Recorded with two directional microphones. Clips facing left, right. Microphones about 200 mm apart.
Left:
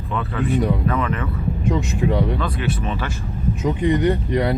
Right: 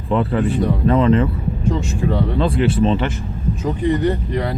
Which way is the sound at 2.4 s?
30° right (ahead or behind).